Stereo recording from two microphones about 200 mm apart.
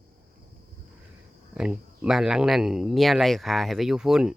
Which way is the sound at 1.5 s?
5° right (ahead or behind).